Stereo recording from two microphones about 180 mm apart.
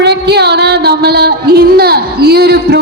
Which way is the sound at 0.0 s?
65° right (ahead or behind).